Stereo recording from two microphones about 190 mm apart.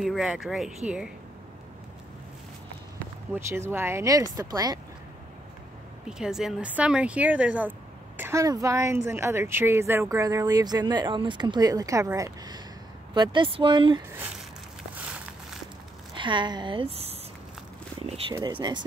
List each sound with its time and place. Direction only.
0.0 s speech: centre (ahead or behind)
3.3 s speech: 15° right (ahead or behind)
6.0 s a woman's voice: 5° right (ahead or behind); by 14.0 s 25° right (ahead or behind)
14.1 s speech: 10° right (ahead or behind)
16.2 s a woman's voice: 25° right (ahead or behind)
18.3 s a woman's voice: 20° right (ahead or behind)